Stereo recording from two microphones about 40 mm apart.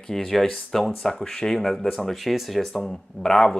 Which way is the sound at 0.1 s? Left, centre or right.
Centre.